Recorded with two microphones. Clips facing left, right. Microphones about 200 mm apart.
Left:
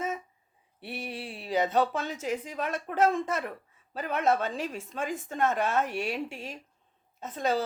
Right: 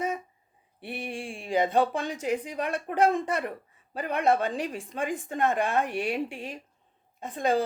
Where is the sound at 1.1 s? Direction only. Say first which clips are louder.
Right 2 dB; 45° right (ahead or behind).